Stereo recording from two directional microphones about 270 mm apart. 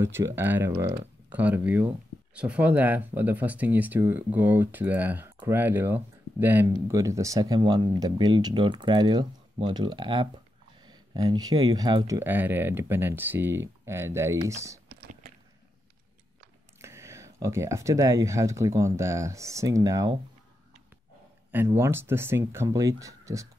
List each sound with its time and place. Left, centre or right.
0.0 s speech: centre
14.9 s a sound: right
16.7 s speech: centre
21.5 s speech: centre